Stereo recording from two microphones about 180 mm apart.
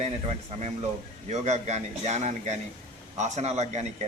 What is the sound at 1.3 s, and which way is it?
A man's voice, 40° right (ahead or behind).